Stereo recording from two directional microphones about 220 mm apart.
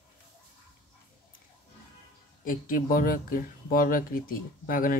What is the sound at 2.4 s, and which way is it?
Speech, 40° left (ahead or behind).